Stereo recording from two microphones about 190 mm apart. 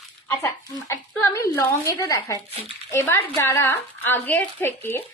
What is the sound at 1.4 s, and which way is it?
A child's voice, 15° left (ahead or behind).